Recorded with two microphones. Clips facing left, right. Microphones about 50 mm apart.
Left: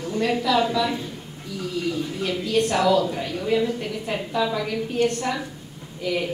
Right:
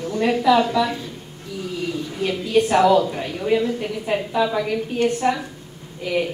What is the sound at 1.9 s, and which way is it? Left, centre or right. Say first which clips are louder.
A woman's voice: right 2 dB; centre.